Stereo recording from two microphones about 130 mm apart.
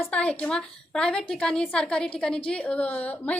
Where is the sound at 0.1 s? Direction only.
10° left (ahead or behind).